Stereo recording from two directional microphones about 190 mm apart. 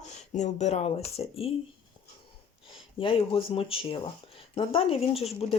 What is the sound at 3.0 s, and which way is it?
Speech, 30° left (ahead or behind).